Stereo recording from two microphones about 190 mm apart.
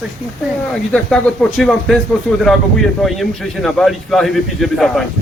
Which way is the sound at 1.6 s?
Centre (ahead or behind).